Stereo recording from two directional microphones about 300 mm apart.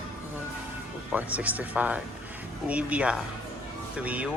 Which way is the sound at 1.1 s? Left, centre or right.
Centre.